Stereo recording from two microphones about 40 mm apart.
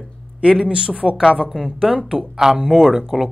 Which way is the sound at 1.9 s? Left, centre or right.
Centre.